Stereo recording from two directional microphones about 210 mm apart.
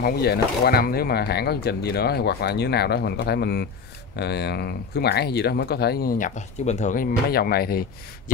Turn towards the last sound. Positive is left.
turn(degrees=45)  # may be behind; listen again after turning